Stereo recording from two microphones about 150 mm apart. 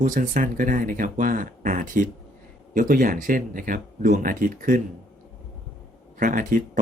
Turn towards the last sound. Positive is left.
turn(degrees=-60)  # may be behind; listen again after turning